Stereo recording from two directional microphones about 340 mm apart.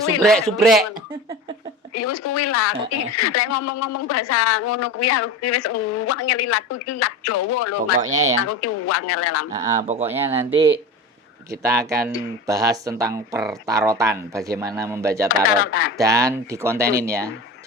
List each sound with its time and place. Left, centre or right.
0.2 s speech: centre
1.9 s a woman's voice: left
8.1 s speech: right
8.4 s a woman's voice: left
9.8 s speech: centre
10.1 s speech: centre
15.5 s speech: left
16.0 s speech: centre